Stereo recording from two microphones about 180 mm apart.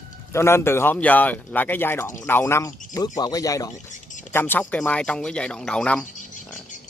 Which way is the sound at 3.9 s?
45° left (ahead or behind).